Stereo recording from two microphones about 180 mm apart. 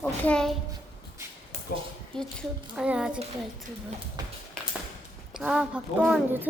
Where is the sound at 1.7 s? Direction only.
65° left (ahead or behind).